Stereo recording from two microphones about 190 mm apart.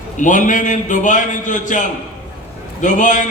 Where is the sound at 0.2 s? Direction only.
40° left (ahead or behind).